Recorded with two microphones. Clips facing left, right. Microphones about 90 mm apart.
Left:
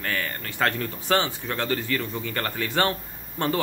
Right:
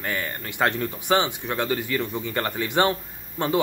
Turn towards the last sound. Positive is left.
turn(degrees=-15)  # may be behind; listen again after turning